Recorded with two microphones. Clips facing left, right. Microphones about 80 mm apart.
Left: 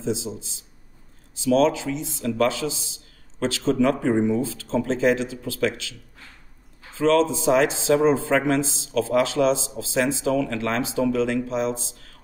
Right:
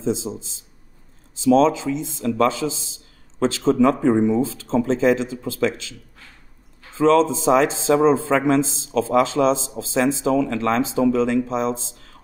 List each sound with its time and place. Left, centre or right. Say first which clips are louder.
0.2 s a man's voice: right 3 dB; right
7.0 s a man's voice: right 3 dB; right